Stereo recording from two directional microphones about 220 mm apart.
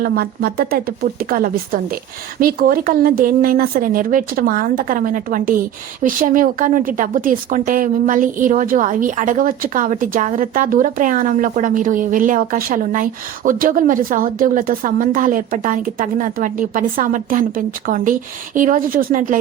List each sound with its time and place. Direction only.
0.0 s a woman's voice: 40° right (ahead or behind)